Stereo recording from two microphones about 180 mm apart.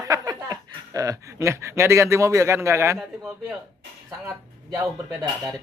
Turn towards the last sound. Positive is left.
turn(degrees=-15)  # may be behind; listen again after turning